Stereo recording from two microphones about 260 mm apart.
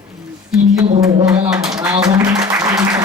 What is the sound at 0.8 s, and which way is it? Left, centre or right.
Speech, right.